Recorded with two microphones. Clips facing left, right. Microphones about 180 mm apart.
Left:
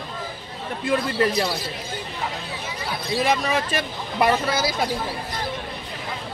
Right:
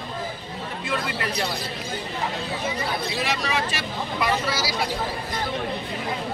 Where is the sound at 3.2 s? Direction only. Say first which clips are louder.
Left 7 dB; 50° left (ahead or behind).